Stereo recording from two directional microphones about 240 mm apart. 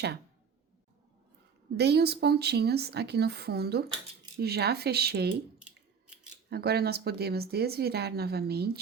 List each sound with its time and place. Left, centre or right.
1.7 s speech: right
5.5 s scissors: centre
6.5 s speech: right